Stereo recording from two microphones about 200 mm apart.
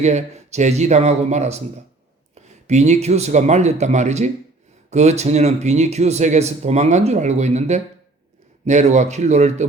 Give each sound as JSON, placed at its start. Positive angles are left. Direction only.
{"t": 0.0, "sound": "speech", "side_deg": -35}
{"t": 2.6, "sound": "speech", "side_deg": -35}